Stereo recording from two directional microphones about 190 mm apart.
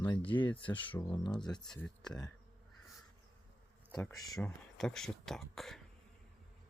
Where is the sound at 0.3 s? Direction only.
25° left (ahead or behind).